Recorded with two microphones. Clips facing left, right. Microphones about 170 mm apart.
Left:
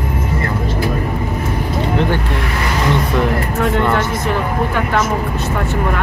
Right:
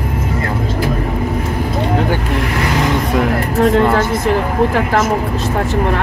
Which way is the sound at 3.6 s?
40° right (ahead or behind).